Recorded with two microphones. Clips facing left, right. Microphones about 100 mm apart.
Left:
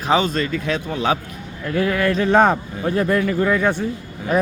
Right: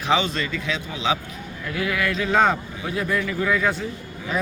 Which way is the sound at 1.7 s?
40° left (ahead or behind).